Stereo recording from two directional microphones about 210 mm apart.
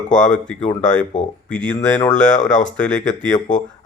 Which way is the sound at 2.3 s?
35° left (ahead or behind).